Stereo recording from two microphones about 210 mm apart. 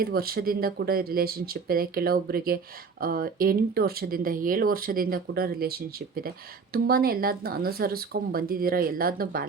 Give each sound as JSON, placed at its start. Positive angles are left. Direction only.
{"t": 0.0, "sound": "speech", "side_deg": -45}